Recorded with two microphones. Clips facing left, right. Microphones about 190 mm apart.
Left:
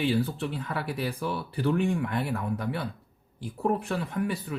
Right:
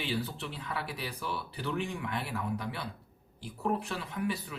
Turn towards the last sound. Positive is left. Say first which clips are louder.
# left 4 dB
turn(degrees=50)  # may be behind; listen again after turning